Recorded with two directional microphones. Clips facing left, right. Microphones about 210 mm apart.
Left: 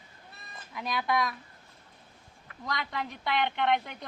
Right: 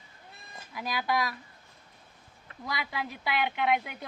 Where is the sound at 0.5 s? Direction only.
Centre (ahead or behind).